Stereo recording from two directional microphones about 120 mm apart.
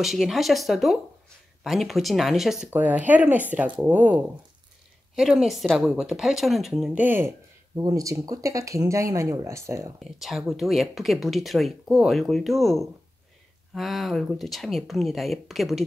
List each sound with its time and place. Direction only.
0.0 s speech: centre (ahead or behind)
2.7 s speech: 15° right (ahead or behind)
7.0 s speech: 20° right (ahead or behind)
9.9 s speech: centre (ahead or behind)